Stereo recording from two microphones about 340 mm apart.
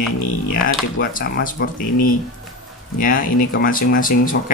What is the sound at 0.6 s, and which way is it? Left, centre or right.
Speech, left.